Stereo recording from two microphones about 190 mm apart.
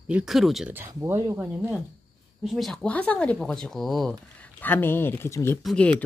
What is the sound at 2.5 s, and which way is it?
Speech, centre (ahead or behind).